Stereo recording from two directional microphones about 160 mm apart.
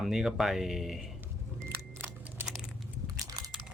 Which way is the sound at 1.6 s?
15° right (ahead or behind).